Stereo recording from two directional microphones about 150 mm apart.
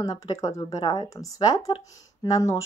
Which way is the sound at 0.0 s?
25° left (ahead or behind).